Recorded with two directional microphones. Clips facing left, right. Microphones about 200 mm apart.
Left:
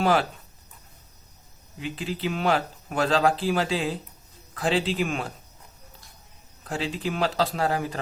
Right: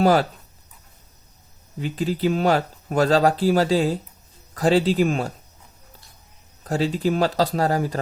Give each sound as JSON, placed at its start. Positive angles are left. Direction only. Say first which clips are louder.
{"t": 0.0, "sound": "speech", "louder": "right 5 dB", "side_deg": -40}
{"t": 1.8, "sound": "speech", "louder": "right 7 dB", "side_deg": -40}
{"t": 6.7, "sound": "speech", "louder": "right 7 dB", "side_deg": -40}